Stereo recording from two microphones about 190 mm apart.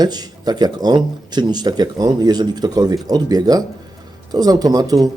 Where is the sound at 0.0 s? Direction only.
20° right (ahead or behind).